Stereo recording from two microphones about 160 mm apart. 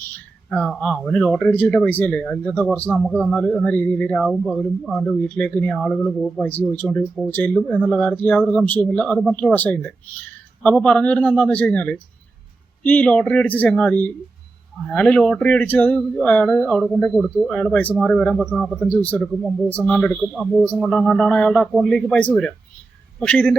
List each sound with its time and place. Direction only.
0.5 s a man's voice: 5° left (ahead or behind)
6.4 s a man's voice: 10° left (ahead or behind)